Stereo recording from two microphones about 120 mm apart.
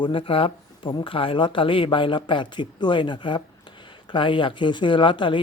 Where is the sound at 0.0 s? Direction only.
50° left (ahead or behind).